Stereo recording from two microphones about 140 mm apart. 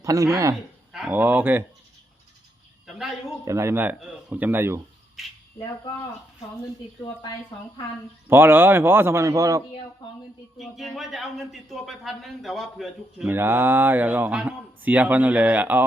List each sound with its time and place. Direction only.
0.0 s speech: 25° right (ahead or behind)
0.9 s speech: 10° right (ahead or behind)
2.8 s a man's voice: centre (ahead or behind)
3.4 s speech: 20° right (ahead or behind)
5.2 s a man's voice: centre (ahead or behind)
7.0 s speech: 30° left (ahead or behind)
8.3 s speech: 15° right (ahead or behind)
10.6 s a man's voice: centre (ahead or behind)
13.2 s speech: 15° right (ahead or behind)